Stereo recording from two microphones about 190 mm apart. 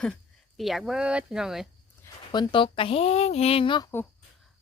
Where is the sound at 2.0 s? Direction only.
25° left (ahead or behind).